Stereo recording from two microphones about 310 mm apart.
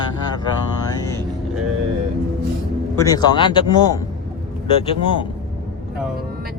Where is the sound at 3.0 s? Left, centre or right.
Centre.